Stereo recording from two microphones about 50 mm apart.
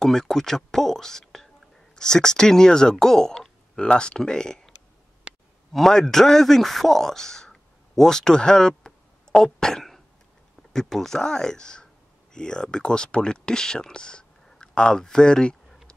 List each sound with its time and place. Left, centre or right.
0.0 s speech: centre
5.3 s a sound: right
5.7 s a man's voice: centre